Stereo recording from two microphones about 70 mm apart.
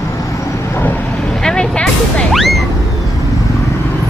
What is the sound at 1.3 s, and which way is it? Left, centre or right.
Music, centre.